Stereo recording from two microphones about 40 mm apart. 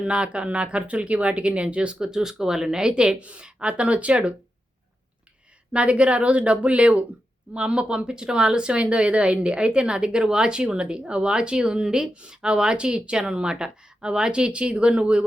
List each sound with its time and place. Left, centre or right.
0.0 s speech: right
3.2 s speech: right
5.7 s speech: right